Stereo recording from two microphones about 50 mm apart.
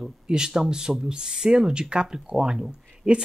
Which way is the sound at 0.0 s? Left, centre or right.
Centre.